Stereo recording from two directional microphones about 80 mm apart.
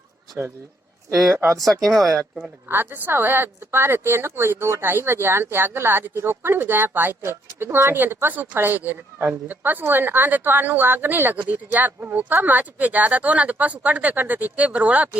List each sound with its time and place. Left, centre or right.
1.5 s speech: centre
2.6 s speech: right